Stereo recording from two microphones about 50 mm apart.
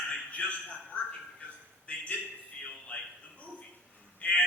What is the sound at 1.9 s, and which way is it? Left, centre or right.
Speech, left.